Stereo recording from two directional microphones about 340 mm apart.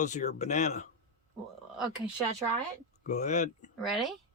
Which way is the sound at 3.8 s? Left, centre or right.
Centre.